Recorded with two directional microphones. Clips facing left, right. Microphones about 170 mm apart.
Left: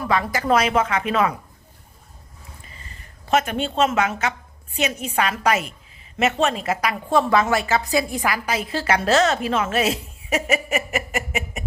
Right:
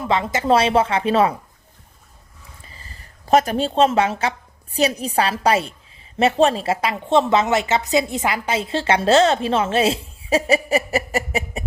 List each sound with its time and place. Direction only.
0.0 s a woman's voice: 25° right (ahead or behind)
2.6 s a woman's voice: 35° right (ahead or behind)